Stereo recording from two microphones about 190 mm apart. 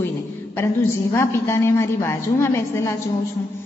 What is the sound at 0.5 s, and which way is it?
A woman's voice, 15° left (ahead or behind).